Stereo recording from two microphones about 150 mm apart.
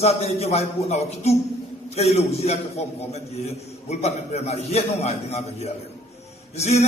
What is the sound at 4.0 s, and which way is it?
A man's voice, 45° left (ahead or behind).